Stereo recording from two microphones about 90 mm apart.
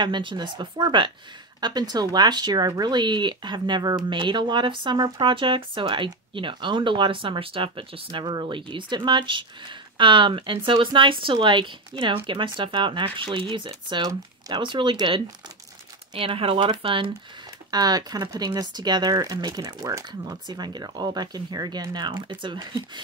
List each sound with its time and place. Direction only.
0.0 s speech: 60° right (ahead or behind)
16.2 s speech: 90° right; by 17.1 s 70° right (ahead or behind)
17.6 s speech: 45° right (ahead or behind); by 22.8 s 65° right (ahead or behind)